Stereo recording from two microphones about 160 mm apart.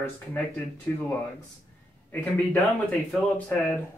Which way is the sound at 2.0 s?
10° left (ahead or behind).